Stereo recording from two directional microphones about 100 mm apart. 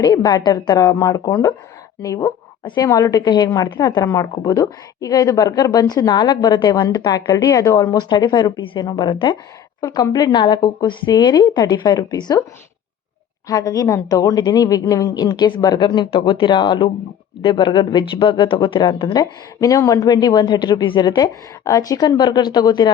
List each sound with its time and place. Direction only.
0.0 s a woman's voice: 40° left (ahead or behind)
7.9 s speech: 45° left (ahead or behind)
8.6 s a woman's voice: 55° left (ahead or behind)
9.8 s a woman's voice: 40° left (ahead or behind)
13.5 s a woman's voice: 35° left (ahead or behind); by 19.1 s 55° left (ahead or behind)
19.5 s speech: 35° left (ahead or behind)
21.6 s speech: 35° left (ahead or behind)